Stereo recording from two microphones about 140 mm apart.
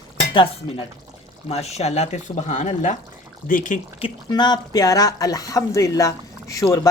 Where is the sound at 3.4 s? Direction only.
75° left (ahead or behind).